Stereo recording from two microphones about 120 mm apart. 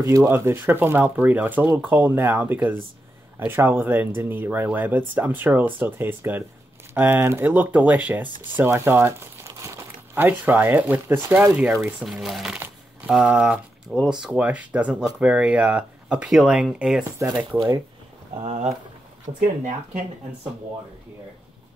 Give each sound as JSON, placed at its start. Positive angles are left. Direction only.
{"t": 0.0, "sound": "speech", "side_deg": -25}
{"t": 12.0, "sound": "speech", "side_deg": -5}
{"t": 12.5, "sound": "a sound", "side_deg": -10}
{"t": 14.0, "sound": "speech", "side_deg": -5}
{"t": 18.3, "sound": "speech", "side_deg": -55}
{"t": 19.2, "sound": "speech", "side_deg": -90}